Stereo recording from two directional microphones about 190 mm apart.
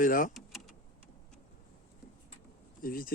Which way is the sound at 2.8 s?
50° left (ahead or behind).